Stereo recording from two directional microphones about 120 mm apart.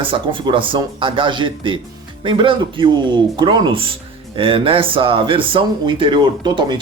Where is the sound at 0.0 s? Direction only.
45° right (ahead or behind).